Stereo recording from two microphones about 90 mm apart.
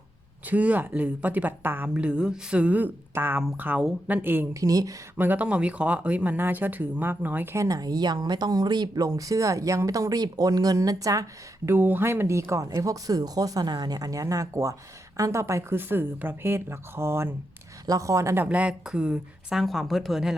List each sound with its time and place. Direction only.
0.4 s speech: 15° right (ahead or behind)
4.5 s speech: 40° right (ahead or behind)
5.1 s speech: 20° right (ahead or behind)
7.5 s speech: 40° right (ahead or behind)
11.7 s speech: 25° right (ahead or behind)
17.8 s speech: 40° right (ahead or behind)
18.4 s a woman's voice: 15° right (ahead or behind)